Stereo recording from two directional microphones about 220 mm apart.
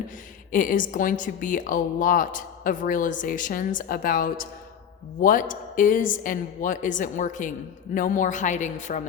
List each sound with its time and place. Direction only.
0.5 s a woman's voice: 35° left (ahead or behind)